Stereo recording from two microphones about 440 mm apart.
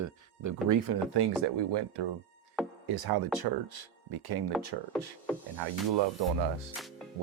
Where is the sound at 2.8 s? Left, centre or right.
Right.